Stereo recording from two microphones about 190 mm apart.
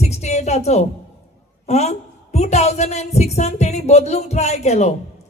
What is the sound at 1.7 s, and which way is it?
A woman's voice, 35° left (ahead or behind).